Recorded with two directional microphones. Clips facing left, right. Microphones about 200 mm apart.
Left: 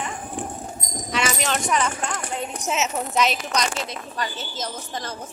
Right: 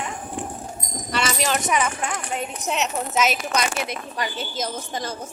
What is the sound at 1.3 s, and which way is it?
A woman's voice, centre (ahead or behind).